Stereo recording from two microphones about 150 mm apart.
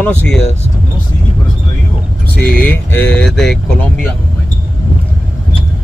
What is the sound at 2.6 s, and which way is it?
Speech, 10° left (ahead or behind).